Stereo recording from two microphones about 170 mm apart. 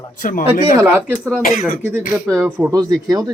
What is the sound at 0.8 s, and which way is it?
Speech, 15° right (ahead or behind).